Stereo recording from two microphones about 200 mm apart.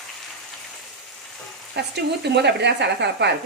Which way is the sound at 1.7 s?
60° right (ahead or behind).